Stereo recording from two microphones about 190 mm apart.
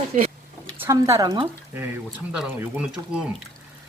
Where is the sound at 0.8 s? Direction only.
15° right (ahead or behind).